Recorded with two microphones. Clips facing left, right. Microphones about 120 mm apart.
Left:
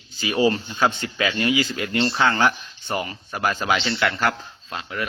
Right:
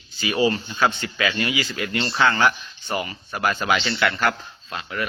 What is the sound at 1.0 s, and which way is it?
Speech, 30° left (ahead or behind).